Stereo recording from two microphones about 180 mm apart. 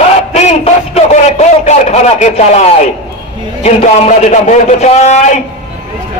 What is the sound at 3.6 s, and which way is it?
A man's voice, 40° left (ahead or behind).